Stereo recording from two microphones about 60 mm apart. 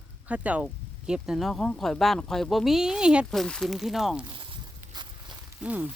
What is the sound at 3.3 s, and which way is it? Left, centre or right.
Speech, centre.